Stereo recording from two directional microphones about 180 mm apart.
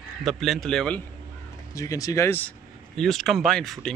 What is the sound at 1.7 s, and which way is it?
Speech, 20° left (ahead or behind).